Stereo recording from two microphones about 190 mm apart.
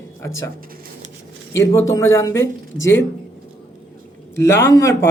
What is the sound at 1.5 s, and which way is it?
Speech, 15° left (ahead or behind).